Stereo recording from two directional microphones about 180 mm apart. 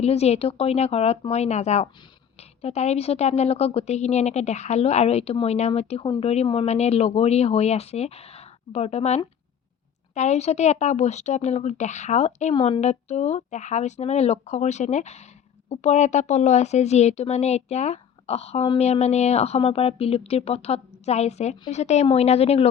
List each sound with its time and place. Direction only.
0.0 s a woman's voice: 35° left (ahead or behind)